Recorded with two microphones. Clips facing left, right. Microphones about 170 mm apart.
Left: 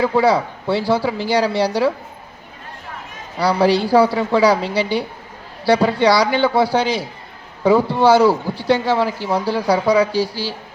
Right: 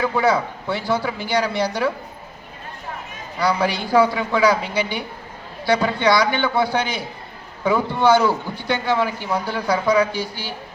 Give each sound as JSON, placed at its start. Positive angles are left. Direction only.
{"t": 0.0, "sound": "a man's voice", "side_deg": 30}
{"t": 3.3, "sound": "a man's voice", "side_deg": 35}